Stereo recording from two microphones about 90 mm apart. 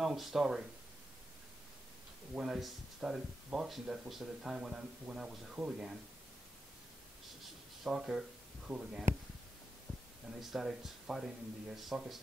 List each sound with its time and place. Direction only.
0.0 s speech: 5° right (ahead or behind)
2.3 s speech: 5° right (ahead or behind)
7.8 s speech: 5° right (ahead or behind)
10.3 s speech: 5° right (ahead or behind)